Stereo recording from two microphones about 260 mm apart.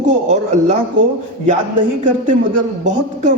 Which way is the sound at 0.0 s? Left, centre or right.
Right.